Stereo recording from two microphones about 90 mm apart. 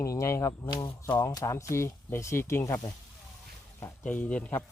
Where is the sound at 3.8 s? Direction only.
15° left (ahead or behind).